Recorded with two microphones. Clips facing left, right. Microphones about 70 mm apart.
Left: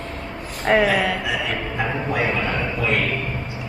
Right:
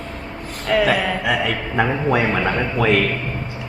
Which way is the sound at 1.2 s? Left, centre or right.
Right.